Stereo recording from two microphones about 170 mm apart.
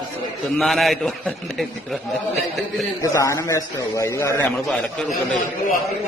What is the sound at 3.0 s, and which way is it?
A man's voice, 20° left (ahead or behind).